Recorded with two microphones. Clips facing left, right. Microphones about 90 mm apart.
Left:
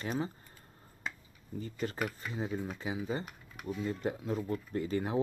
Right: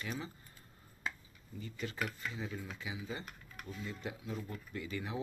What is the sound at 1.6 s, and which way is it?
Speech, 40° left (ahead or behind).